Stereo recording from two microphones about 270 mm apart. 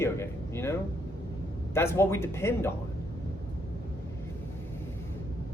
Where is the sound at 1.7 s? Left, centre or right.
Centre.